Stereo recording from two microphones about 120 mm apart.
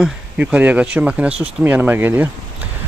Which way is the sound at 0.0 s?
10° right (ahead or behind).